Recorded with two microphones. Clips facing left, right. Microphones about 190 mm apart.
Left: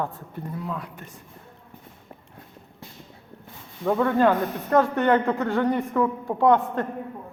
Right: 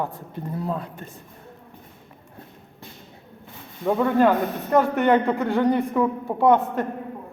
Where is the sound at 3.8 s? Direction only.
10° right (ahead or behind).